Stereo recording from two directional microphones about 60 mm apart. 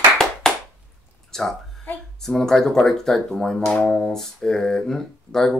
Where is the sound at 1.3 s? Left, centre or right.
Centre.